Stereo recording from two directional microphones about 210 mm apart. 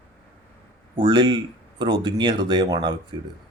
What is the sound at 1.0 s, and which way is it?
Speech, 20° right (ahead or behind).